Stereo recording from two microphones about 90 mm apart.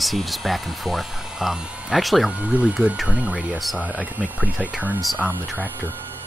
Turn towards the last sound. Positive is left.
turn(degrees=-15)  # may be behind; listen again after turning